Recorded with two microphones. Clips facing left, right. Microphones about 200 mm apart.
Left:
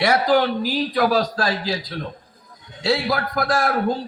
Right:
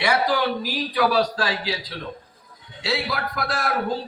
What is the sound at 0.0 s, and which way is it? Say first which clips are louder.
A man's voice: left 4 dB; 50° left (ahead or behind).